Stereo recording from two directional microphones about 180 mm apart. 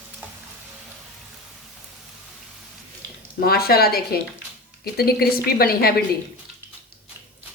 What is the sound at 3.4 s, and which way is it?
A woman's voice, 60° left (ahead or behind).